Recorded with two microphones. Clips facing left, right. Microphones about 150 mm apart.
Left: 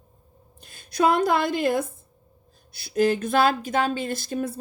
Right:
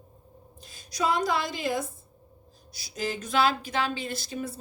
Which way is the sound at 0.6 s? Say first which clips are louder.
Left 7 dB; 60° left (ahead or behind).